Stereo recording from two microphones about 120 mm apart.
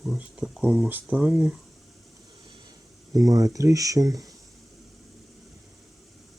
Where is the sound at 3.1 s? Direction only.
30° right (ahead or behind).